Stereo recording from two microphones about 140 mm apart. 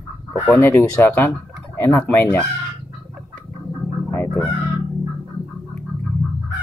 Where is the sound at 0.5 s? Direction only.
15° left (ahead or behind).